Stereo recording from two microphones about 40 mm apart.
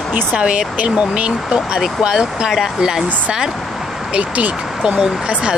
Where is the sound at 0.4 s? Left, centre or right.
Right.